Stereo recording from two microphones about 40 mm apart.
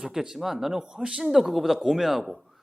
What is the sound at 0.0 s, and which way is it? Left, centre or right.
Speech, centre.